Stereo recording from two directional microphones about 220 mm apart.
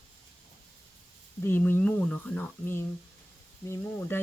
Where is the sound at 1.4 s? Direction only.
10° left (ahead or behind).